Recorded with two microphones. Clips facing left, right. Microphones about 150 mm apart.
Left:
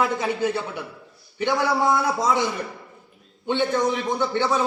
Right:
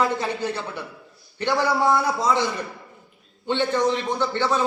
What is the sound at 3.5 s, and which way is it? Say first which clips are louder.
A man's voice: even; 10° left (ahead or behind).